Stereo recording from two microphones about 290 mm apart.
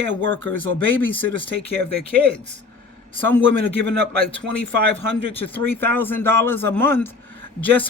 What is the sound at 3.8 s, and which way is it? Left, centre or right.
Speech, right.